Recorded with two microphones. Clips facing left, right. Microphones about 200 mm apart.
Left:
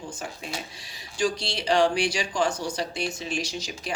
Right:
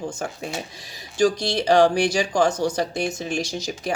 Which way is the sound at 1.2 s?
40° right (ahead or behind).